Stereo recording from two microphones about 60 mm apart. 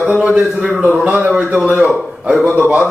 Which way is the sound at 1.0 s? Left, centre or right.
Right.